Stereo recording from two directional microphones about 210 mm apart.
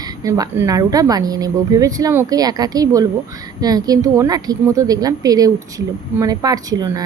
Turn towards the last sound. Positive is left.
turn(degrees=-15)  # may be behind; listen again after turning